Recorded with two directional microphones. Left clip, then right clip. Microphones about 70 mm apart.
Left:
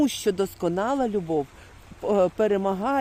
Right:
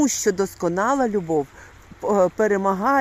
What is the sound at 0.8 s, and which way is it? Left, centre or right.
Speech, right.